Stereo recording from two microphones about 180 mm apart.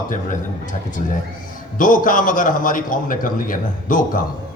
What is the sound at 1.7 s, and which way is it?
A man's voice, 50° left (ahead or behind).